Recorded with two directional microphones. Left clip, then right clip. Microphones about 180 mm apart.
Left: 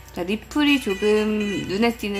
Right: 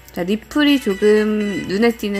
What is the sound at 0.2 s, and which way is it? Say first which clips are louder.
Speech: right 5 dB; 15° right (ahead or behind).